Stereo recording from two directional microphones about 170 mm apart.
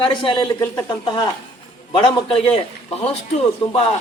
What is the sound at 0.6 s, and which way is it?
Speech, 20° left (ahead or behind).